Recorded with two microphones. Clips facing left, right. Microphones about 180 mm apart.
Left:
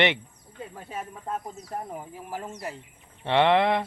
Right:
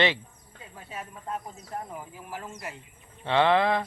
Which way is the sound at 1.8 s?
40° left (ahead or behind).